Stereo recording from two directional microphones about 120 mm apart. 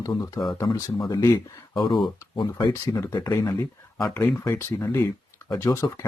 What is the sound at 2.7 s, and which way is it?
Speech, 25° left (ahead or behind).